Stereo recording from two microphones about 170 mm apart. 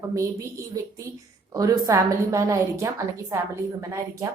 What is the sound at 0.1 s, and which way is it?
A woman's voice, 20° right (ahead or behind).